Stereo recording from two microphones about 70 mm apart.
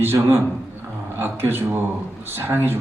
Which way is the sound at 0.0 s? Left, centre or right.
Right.